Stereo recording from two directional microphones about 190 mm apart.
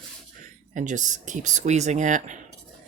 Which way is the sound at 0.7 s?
40° right (ahead or behind).